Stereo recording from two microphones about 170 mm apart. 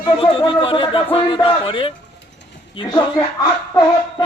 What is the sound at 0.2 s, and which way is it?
A man's voice, 30° left (ahead or behind).